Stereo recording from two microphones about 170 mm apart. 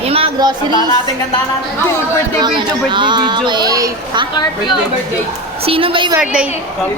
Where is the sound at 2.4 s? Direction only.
25° right (ahead or behind).